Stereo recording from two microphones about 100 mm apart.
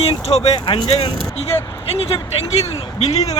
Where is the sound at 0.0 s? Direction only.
85° left.